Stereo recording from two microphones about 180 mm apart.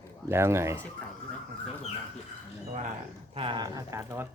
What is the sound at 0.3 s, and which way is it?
Speech, 15° right (ahead or behind).